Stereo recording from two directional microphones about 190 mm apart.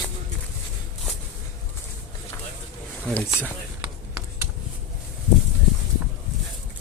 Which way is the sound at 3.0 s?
10° left (ahead or behind).